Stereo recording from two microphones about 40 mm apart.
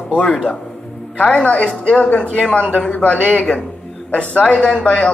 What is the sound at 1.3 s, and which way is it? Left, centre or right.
Speech, left.